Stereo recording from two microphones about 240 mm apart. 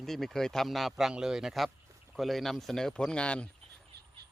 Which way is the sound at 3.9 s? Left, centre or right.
Right.